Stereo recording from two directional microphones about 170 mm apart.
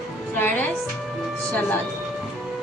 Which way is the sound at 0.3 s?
10° left (ahead or behind).